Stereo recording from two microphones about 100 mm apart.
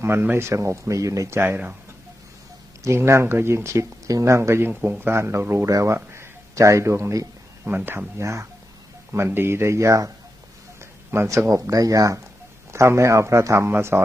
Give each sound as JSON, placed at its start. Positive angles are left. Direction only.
{"t": 0.0, "sound": "speech", "side_deg": -25}
{"t": 1.5, "sound": "speech", "side_deg": -15}
{"t": 2.8, "sound": "speech", "side_deg": -25}